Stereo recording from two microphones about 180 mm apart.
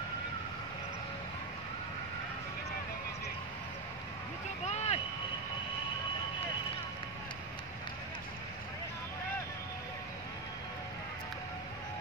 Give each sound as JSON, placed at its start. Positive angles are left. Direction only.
{"t": 4.6, "sound": "vehicle", "side_deg": 35}